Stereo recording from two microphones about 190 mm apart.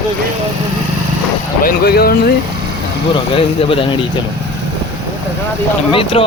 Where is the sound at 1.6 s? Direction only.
55° left (ahead or behind).